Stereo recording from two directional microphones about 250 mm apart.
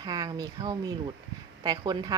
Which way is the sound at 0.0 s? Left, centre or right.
Centre.